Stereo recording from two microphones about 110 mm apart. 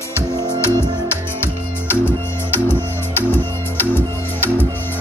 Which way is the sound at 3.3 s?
20° left (ahead or behind).